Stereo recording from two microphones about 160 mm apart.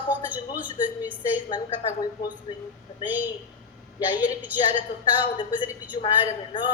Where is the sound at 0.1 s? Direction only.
10° right (ahead or behind).